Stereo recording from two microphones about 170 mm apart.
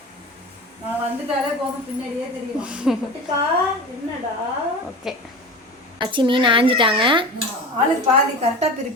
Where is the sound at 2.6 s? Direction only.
5° right (ahead or behind).